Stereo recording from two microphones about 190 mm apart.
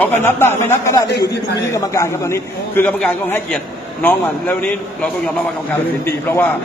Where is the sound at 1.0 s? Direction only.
60° left (ahead or behind).